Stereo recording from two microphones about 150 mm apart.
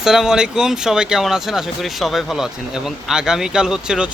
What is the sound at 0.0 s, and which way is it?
Speech, 5° right (ahead or behind).